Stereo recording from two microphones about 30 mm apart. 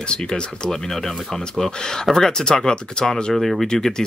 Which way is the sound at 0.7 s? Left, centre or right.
Centre.